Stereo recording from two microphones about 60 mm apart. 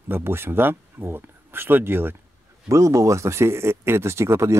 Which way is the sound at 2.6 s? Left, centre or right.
Right.